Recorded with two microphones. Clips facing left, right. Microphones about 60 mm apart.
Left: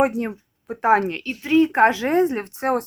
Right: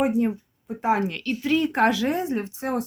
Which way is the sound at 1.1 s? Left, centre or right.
Left.